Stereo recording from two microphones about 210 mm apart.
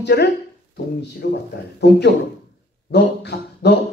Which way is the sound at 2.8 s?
50° left (ahead or behind).